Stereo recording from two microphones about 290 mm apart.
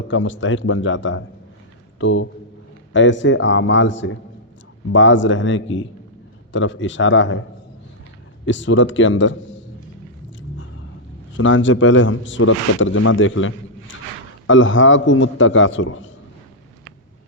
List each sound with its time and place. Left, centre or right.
0.1 s a man's voice: left
8.4 s a man's voice: left
11.3 s a man's voice: left